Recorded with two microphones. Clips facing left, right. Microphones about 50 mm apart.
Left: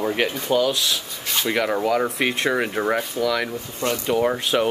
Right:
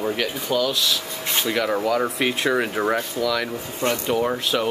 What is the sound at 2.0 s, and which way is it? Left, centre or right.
Speech, centre.